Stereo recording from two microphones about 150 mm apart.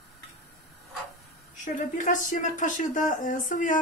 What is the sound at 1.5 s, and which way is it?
Speech, 60° left (ahead or behind).